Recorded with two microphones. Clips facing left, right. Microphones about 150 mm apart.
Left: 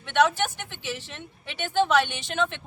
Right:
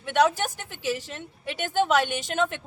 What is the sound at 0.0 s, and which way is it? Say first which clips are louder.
A woman's voice: even; 40° right (ahead or behind).